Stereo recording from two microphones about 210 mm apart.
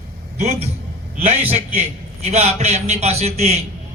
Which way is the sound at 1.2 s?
30° right (ahead or behind).